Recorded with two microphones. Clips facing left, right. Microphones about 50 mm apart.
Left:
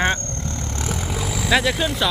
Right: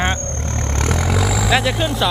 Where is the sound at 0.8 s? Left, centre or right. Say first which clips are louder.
Right 7 dB; right.